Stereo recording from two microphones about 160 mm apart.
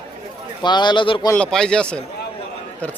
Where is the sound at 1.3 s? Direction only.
5° left (ahead or behind).